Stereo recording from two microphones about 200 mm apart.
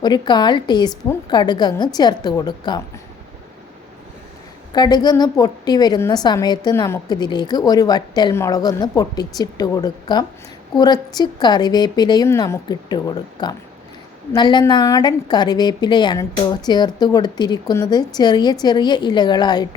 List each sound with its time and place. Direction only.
0.0 s a woman's voice: 20° left (ahead or behind)
4.7 s a woman's voice: 20° left (ahead or behind)